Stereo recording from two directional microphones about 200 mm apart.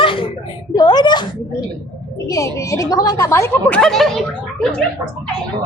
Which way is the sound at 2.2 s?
15° left (ahead or behind).